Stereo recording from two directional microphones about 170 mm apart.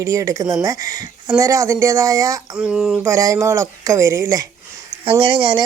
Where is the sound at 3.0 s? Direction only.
20° right (ahead or behind).